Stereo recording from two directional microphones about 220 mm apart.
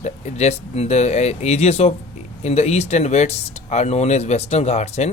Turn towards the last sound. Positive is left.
turn(degrees=30)  # may be behind; listen again after turning